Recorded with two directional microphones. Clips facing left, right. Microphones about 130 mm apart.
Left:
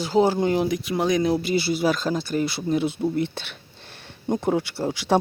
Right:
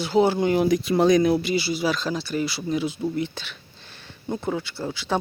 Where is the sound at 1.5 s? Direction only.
50° left (ahead or behind).